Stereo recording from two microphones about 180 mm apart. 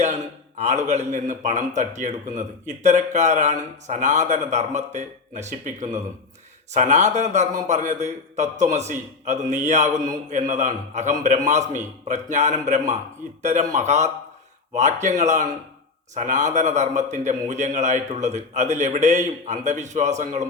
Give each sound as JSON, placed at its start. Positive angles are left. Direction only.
{"t": 0.6, "sound": "speech", "side_deg": -40}